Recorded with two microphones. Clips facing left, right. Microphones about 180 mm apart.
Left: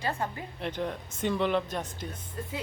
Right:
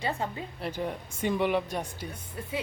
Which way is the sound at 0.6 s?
10° right (ahead or behind).